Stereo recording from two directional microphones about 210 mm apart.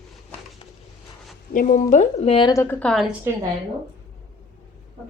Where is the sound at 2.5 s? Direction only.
15° left (ahead or behind).